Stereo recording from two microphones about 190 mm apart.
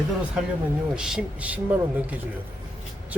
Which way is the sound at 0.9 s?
5° right (ahead or behind).